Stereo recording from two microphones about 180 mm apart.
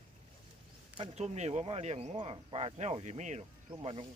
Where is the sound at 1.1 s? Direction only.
40° right (ahead or behind).